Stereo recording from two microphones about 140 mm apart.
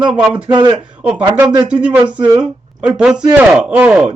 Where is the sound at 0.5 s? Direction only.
35° right (ahead or behind).